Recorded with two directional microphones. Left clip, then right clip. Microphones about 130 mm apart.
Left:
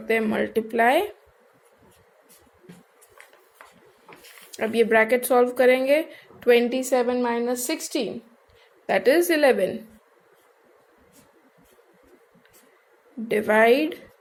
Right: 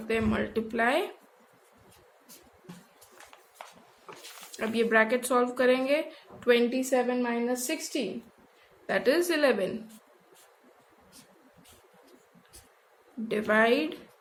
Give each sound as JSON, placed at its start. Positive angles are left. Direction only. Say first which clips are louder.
{"t": 0.1, "sound": "speech", "louder": "left 6 dB", "side_deg": 35}
{"t": 4.5, "sound": "a woman's voice", "louder": "left 5 dB", "side_deg": 40}
{"t": 13.2, "sound": "speech", "louder": "left 6 dB", "side_deg": 40}